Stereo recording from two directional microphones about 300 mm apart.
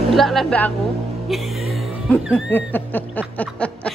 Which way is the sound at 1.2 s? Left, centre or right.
Centre.